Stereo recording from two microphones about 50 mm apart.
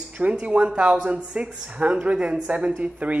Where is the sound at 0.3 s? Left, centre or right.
Right.